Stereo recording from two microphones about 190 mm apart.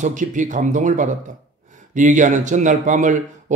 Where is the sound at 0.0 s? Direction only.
40° right (ahead or behind).